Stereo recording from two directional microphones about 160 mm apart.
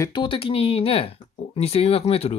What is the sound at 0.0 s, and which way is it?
Speech, 30° left (ahead or behind).